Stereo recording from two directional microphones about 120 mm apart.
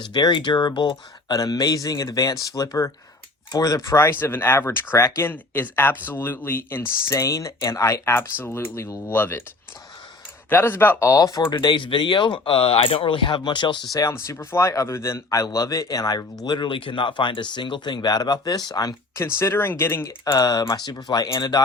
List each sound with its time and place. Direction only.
0.0 s speech: 35° left (ahead or behind); by 9.4 s 15° left (ahead or behind)
10.5 s speech: 15° left (ahead or behind)
11.1 s speech: 30° left (ahead or behind)
13.9 s speech: 25° left (ahead or behind)